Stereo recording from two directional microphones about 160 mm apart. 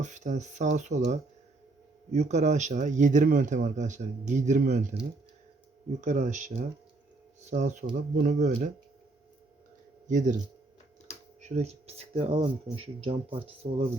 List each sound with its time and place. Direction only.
0.0 s speech: 50° right (ahead or behind)
6.0 s speech: 50° right (ahead or behind)
10.1 s speech: 50° right (ahead or behind)
11.3 s speech: 45° right (ahead or behind)